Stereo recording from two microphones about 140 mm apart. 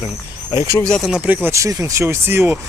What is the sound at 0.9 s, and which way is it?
Speech, centre (ahead or behind).